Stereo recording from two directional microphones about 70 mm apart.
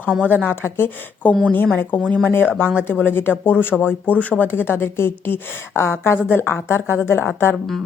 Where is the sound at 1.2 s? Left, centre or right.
Left.